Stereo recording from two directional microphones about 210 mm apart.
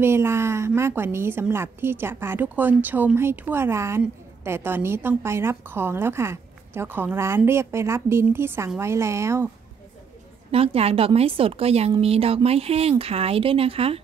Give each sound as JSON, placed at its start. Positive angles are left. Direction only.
{"t": 0.0, "sound": "a woman's voice", "side_deg": -10}
{"t": 10.5, "sound": "a woman's voice", "side_deg": -30}